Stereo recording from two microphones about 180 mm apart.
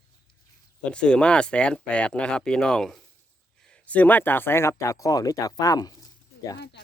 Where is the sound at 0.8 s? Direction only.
5° left (ahead or behind).